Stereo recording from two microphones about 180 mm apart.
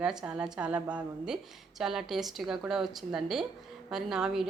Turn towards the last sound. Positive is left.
turn(degrees=0)  # may be behind; listen again after turning